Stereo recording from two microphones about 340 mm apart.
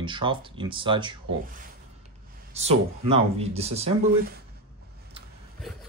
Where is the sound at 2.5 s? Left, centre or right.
Centre.